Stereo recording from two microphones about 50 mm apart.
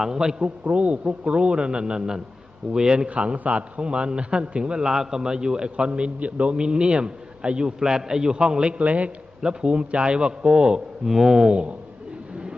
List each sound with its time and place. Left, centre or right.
0.0 s speech: centre
0.6 s a man's voice: right
9.4 s a man's voice: centre